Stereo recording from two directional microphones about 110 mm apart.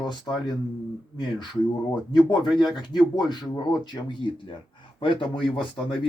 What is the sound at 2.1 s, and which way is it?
Speech, 45° left (ahead or behind).